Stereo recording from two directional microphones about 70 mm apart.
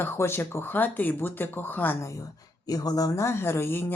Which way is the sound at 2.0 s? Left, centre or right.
Left.